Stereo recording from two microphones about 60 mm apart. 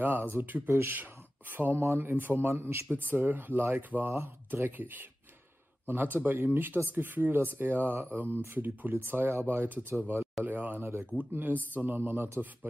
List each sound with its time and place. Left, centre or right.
0.0 s speech: right
10.4 s speech: right